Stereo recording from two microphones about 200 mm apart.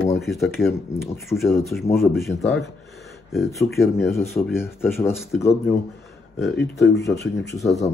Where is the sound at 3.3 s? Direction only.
Centre (ahead or behind).